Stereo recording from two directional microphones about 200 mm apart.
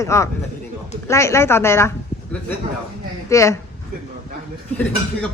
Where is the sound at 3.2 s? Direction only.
15° left (ahead or behind).